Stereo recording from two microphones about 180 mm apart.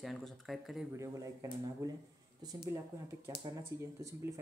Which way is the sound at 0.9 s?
15° right (ahead or behind).